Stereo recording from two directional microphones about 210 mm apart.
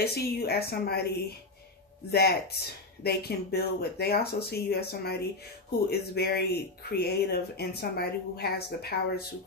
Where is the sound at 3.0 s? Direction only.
50° left (ahead or behind).